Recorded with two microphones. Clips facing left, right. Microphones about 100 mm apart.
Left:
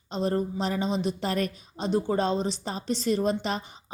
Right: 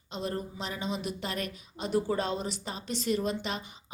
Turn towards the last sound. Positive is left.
turn(degrees=35)  # may be behind; listen again after turning